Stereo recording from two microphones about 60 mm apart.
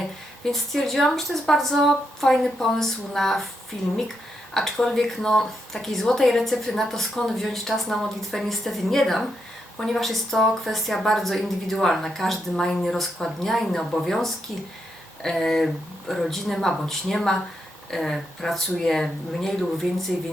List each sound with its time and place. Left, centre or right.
0.4 s speech: centre
4.5 s speech: centre